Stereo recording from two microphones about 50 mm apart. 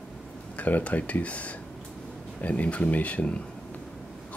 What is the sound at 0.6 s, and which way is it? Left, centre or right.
Speech, left.